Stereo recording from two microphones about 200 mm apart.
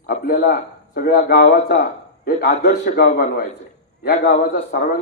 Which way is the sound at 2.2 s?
50° left (ahead or behind).